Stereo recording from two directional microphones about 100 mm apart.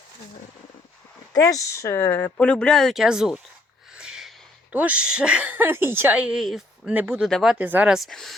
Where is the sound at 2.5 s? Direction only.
10° left (ahead or behind).